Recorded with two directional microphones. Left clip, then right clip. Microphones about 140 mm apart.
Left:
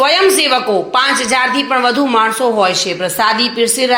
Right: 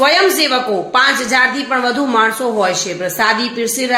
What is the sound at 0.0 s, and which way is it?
A woman's voice, 10° left (ahead or behind).